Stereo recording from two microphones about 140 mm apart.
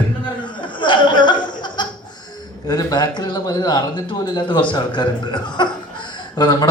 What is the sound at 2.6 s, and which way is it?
Speech, 30° left (ahead or behind).